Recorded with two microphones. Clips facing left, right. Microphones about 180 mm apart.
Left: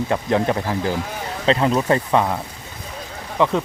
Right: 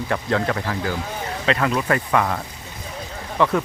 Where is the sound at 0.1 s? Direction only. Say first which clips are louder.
Left 2 dB; 20° left (ahead or behind).